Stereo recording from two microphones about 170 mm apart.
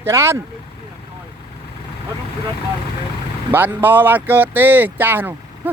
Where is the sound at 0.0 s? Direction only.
15° right (ahead or behind).